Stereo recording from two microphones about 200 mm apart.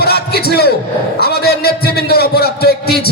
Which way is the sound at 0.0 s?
50° left (ahead or behind).